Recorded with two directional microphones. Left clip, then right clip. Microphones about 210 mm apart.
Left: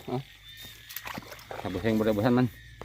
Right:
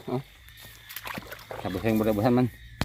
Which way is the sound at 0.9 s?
25° right (ahead or behind).